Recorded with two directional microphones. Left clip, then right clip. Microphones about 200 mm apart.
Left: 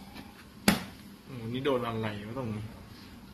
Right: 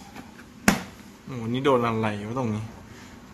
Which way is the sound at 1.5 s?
50° right (ahead or behind).